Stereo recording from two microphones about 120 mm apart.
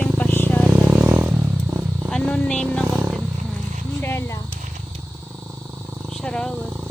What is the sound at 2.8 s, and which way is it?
Wild animals, 20° right (ahead or behind).